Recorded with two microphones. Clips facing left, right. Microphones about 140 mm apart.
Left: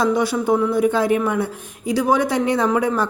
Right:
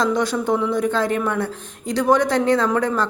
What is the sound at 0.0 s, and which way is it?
A woman's voice, 10° left (ahead or behind).